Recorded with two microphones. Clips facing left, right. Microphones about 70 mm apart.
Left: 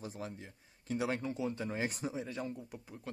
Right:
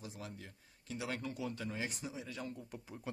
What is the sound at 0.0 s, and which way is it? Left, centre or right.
Speech, left.